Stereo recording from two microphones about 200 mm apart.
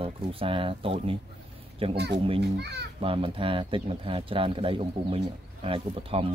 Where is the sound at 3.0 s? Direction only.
25° right (ahead or behind).